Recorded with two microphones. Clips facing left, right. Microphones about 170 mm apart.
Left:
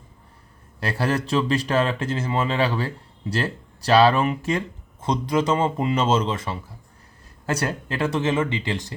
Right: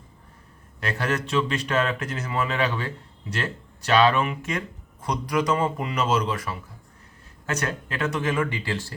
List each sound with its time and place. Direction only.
0.8 s speech: 30° left (ahead or behind)